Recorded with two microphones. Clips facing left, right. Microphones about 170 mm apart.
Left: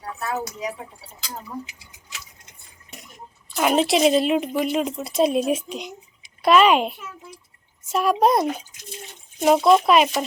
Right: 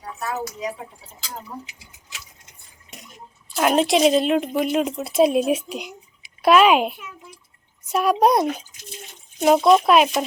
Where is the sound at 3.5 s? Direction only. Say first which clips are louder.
Right 1 dB; centre (ahead or behind).